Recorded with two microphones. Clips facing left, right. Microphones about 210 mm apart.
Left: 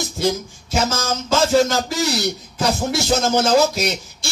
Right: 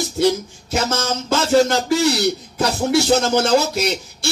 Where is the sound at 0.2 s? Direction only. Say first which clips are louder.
Right 4 dB; 65° right (ahead or behind).